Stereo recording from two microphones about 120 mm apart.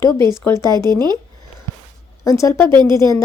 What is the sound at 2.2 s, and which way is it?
Speech, 25° left (ahead or behind).